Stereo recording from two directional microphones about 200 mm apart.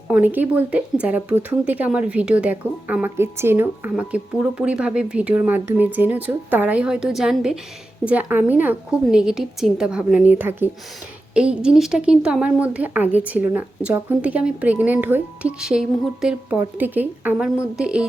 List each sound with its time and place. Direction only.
0.1 s a woman's voice: 10° right (ahead or behind)